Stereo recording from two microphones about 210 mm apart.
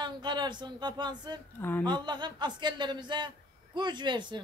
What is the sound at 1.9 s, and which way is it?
A man's voice, 20° right (ahead or behind).